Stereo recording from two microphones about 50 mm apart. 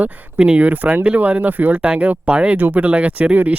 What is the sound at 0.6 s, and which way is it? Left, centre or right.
Speech, right.